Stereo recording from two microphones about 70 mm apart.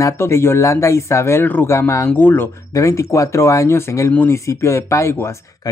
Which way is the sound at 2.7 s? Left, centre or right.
Left.